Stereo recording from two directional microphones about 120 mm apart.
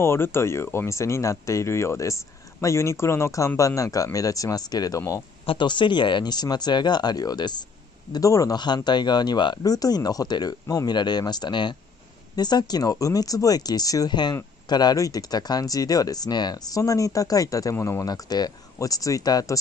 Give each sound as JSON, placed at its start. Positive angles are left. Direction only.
{"t": 0.0, "sound": "speech", "side_deg": 20}
{"t": 5.4, "sound": "speech", "side_deg": 45}